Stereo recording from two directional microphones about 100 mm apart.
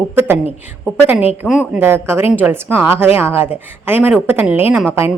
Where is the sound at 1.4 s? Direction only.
5° right (ahead or behind).